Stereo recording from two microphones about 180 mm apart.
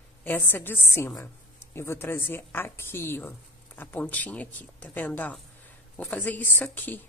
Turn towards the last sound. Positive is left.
turn(degrees=10)  # may be behind; listen again after turning